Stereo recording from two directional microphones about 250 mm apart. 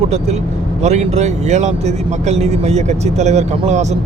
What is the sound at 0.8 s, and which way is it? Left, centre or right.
Speech, right.